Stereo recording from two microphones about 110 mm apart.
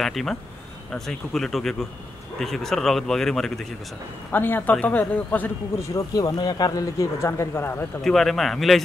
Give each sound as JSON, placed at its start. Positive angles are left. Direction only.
{"t": 0.0, "sound": "speech", "side_deg": 5}
{"t": 4.3, "sound": "a man's voice", "side_deg": 20}
{"t": 5.8, "sound": "speech", "side_deg": 30}
{"t": 8.0, "sound": "speech", "side_deg": 5}